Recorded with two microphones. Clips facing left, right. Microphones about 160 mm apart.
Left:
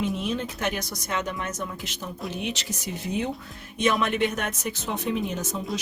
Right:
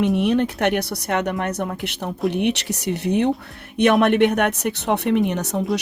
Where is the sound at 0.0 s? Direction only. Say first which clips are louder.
Right 9 dB; 70° right (ahead or behind).